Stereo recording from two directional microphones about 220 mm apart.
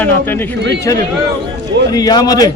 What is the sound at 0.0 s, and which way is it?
Speech, 10° left (ahead or behind).